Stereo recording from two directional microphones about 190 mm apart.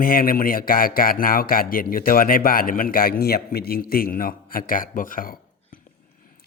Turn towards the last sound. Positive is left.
turn(degrees=45)  # may be behind; listen again after turning